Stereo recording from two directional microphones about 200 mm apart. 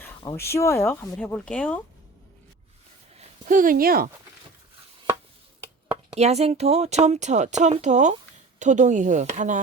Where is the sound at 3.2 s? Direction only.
40° right (ahead or behind).